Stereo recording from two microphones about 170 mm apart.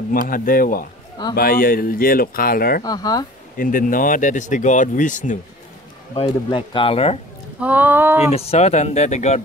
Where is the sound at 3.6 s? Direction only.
50° left (ahead or behind).